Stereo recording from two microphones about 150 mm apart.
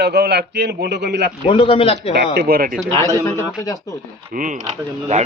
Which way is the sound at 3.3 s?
20° left (ahead or behind).